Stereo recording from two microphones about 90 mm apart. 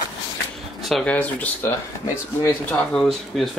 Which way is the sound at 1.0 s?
15° left (ahead or behind).